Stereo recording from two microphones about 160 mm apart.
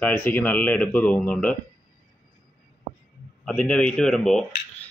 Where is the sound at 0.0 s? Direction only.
10° left (ahead or behind).